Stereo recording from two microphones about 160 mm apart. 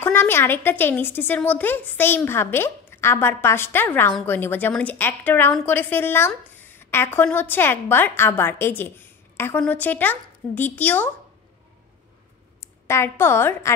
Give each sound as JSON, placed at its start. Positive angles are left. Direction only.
{"t": 0.0, "sound": "a woman's voice", "side_deg": 15}
{"t": 12.5, "sound": "a woman's voice", "side_deg": 15}